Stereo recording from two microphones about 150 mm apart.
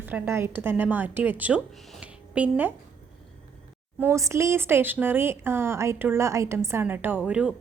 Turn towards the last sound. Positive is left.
turn(degrees=-10)  # may be behind; listen again after turning